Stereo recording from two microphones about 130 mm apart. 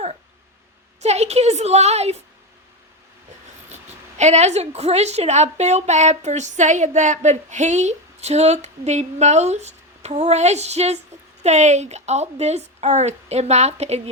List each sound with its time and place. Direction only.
1.0 s a woman's voice: 55° right (ahead or behind)
4.2 s a woman's voice: 60° right (ahead or behind)